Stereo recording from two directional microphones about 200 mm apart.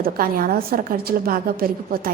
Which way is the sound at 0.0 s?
45° right (ahead or behind).